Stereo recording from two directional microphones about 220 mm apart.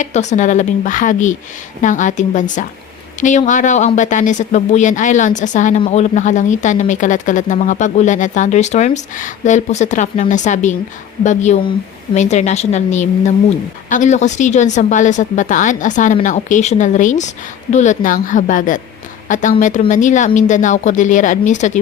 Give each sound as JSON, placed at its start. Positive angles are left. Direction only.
{"t": 0.0, "sound": "speech", "side_deg": 30}